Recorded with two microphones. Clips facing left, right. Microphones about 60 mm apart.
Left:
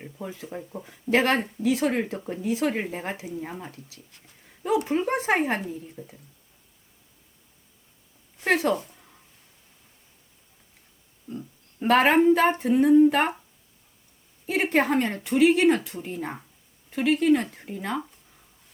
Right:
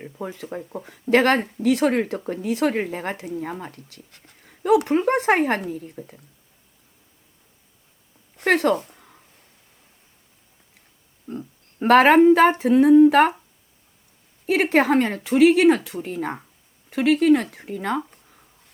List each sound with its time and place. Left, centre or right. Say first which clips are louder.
0.2 s a woman's voice: right 4 dB; right
0.5 s speech: right 4 dB; right
1.1 s speech: right 4 dB; right
1.9 s a woman's voice: right 5 dB; right
2.7 s a woman's voice: right 4 dB; right
3.3 s speech: right 5 dB; right
3.8 s speech: right 3 dB; right
8.4 s speech: right 4 dB; right
11.3 s a sound: right 4 dB; right
11.9 s speech: right 5 dB; right
14.4 s speech: right 5 dB; right